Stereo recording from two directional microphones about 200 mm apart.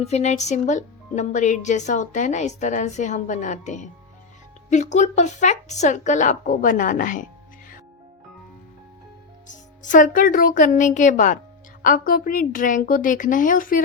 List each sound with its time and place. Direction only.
0.0 s speech: 35° left (ahead or behind)
9.5 s a woman's voice: 40° left (ahead or behind)